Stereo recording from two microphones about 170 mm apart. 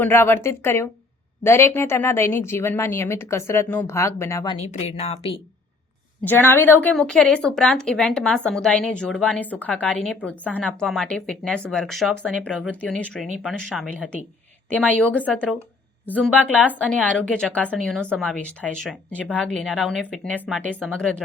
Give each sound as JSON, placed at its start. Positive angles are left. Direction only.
{"t": 0.0, "sound": "a woman's voice", "side_deg": 15}
{"t": 4.4, "sound": "a woman's voice", "side_deg": 35}
{"t": 6.2, "sound": "a woman's voice", "side_deg": 10}